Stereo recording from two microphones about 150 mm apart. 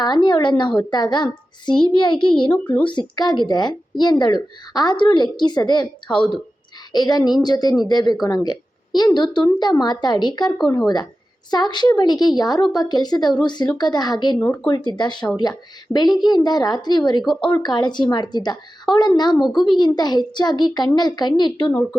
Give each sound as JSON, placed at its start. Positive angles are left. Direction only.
{"t": 0.0, "sound": "a woman's voice", "side_deg": 30}
{"t": 2.5, "sound": "speech", "side_deg": 10}
{"t": 3.2, "sound": "a woman's voice", "side_deg": 30}
{"t": 14.3, "sound": "speech", "side_deg": 15}
{"t": 14.8, "sound": "a woman's voice", "side_deg": 30}
{"t": 17.2, "sound": "speech", "side_deg": 5}
{"t": 17.6, "sound": "a woman's voice", "side_deg": 30}